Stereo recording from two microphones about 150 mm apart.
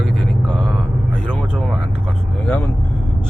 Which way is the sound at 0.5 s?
5° right (ahead or behind).